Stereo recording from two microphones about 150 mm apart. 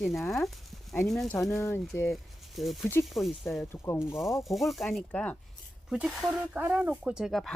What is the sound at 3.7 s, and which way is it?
Speech, 20° left (ahead or behind).